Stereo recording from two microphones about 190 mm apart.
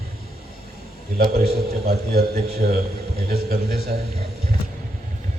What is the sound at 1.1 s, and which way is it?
A man's voice, 55° right (ahead or behind).